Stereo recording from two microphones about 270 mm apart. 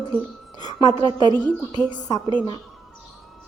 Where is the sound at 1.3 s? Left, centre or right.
Centre.